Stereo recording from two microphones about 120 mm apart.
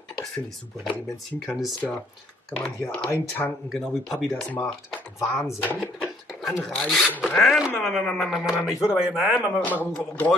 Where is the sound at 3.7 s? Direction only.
Centre (ahead or behind).